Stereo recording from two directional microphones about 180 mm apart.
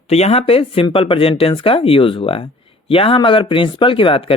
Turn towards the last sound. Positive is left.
turn(degrees=30)  # may be behind; listen again after turning